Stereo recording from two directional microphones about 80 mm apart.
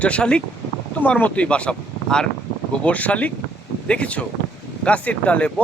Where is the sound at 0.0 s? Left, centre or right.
Centre.